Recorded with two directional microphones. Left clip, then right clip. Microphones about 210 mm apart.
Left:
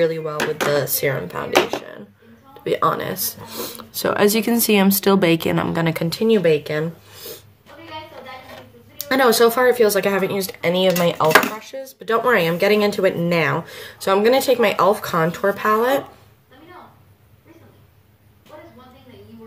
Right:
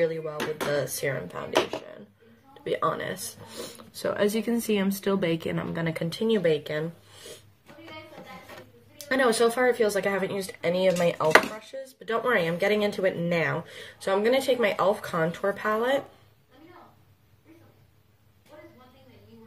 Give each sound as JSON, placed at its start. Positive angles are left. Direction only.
{"t": 0.0, "sound": "speech", "side_deg": 10}
{"t": 2.6, "sound": "speech", "side_deg": 10}
{"t": 9.1, "sound": "speech", "side_deg": 10}